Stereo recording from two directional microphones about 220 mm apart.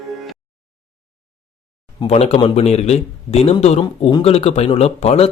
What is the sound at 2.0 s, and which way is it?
Speech, 30° left (ahead or behind).